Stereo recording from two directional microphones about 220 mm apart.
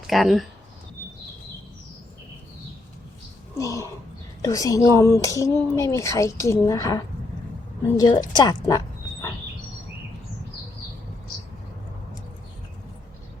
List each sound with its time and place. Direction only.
0.1 s speech: centre (ahead or behind)
3.6 s a woman's voice: 15° left (ahead or behind)